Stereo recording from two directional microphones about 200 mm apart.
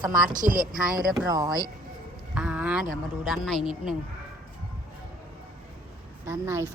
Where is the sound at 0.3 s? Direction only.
45° right (ahead or behind).